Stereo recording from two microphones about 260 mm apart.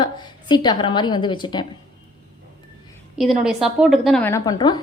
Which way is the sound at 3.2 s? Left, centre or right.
Centre.